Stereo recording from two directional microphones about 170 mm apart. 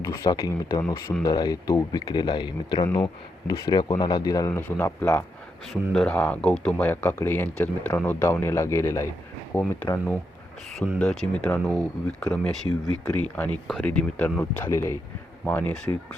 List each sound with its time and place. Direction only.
0.0 s speech: 20° left (ahead or behind)